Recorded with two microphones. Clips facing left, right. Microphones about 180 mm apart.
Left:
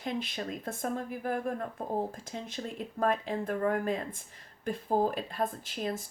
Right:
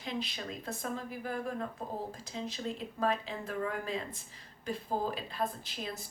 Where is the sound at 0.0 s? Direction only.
50° left (ahead or behind).